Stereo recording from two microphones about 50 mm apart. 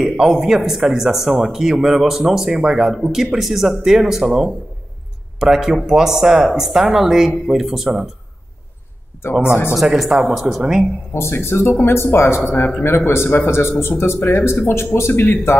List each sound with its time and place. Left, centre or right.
0.0 s a man's voice: centre
9.3 s speech: right
9.8 s a man's voice: centre
11.1 s a man's voice: left
12.4 s speech: left
12.8 s a man's voice: left